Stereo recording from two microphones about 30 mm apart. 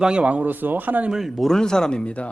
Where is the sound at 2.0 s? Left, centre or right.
Left.